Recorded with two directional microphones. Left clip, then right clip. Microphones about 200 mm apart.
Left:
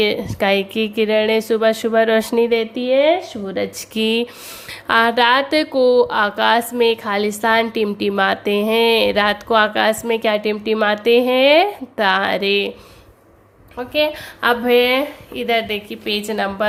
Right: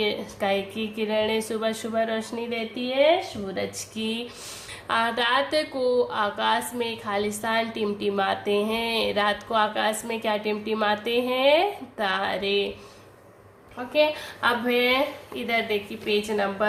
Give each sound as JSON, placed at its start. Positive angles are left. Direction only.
{"t": 0.0, "sound": "speech", "side_deg": 45}
{"t": 13.7, "sound": "speech", "side_deg": 50}